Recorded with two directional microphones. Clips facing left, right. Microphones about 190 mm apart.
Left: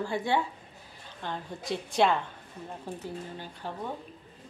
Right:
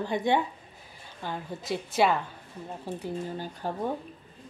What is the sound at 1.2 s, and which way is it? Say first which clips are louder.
A woman's voice: right 2 dB; 5° right (ahead or behind).